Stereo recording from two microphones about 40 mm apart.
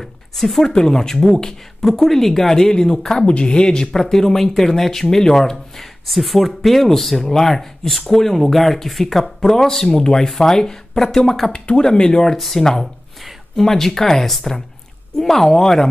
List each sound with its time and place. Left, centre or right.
0.0 s speech: centre
3.3 s speech: left; by 11.6 s centre
11.6 s speech: centre
12.4 s speech: centre